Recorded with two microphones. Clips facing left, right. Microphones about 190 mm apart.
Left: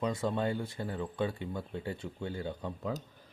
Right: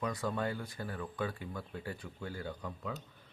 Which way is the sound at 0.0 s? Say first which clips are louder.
Left 4 dB; 25° left (ahead or behind).